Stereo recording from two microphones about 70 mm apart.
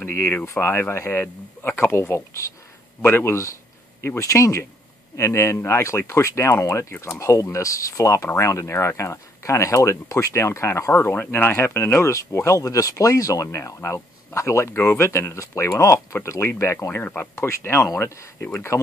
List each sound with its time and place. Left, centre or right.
0.0 s speech: left
17.0 s speech: left
17.4 s speech: left